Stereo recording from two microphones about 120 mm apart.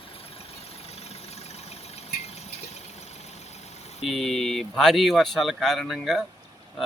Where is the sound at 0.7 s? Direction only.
60° left (ahead or behind).